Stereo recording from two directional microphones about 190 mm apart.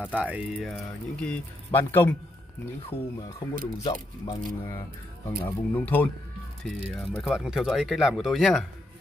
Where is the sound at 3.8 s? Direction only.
20° left (ahead or behind); by 8.6 s centre (ahead or behind).